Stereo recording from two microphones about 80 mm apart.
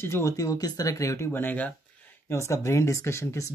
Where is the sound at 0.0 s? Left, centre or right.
Left.